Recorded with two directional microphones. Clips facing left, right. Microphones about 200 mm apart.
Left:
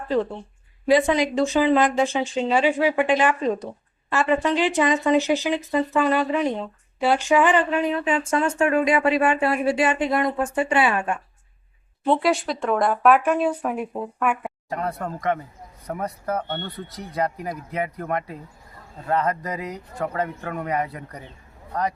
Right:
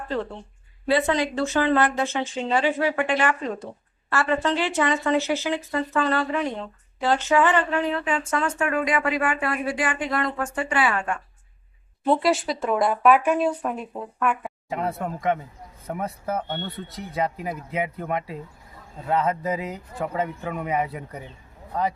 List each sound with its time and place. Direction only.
0.9 s speech: 15° left (ahead or behind)
12.0 s a woman's voice: centre (ahead or behind)